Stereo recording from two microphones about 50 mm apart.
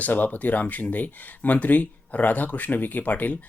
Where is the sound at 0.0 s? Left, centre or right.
Left.